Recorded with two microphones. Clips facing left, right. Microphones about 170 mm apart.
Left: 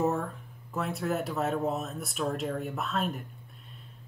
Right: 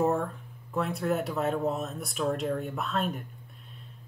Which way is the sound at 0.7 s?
Centre (ahead or behind).